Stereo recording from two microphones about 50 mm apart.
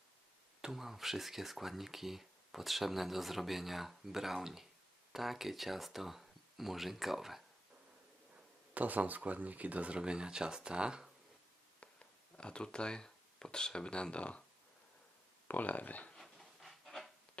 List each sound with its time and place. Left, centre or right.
0.6 s speech: centre
8.7 s speech: right
10.0 s speech: centre
12.4 s speech: centre
15.4 s speech: left
16.1 s a sound: centre